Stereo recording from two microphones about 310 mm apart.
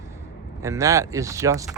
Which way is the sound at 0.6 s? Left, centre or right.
Centre.